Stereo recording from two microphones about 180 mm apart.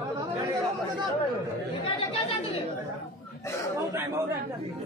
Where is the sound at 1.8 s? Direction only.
30° left (ahead or behind).